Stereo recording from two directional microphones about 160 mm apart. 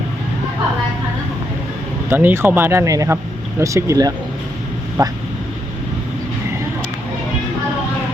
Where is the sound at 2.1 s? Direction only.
15° right (ahead or behind).